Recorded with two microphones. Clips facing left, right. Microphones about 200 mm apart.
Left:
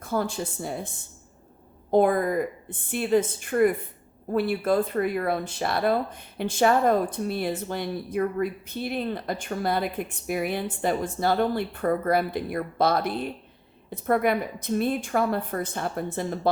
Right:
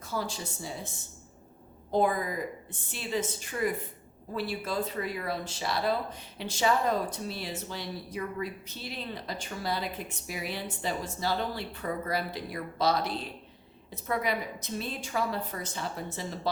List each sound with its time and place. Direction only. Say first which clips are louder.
0.0 s a woman's voice: left 7 dB; 55° left (ahead or behind)
1.9 s a woman's voice: left 7 dB; 55° left (ahead or behind)